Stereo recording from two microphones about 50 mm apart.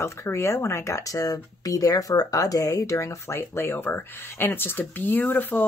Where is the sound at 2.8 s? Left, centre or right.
Left.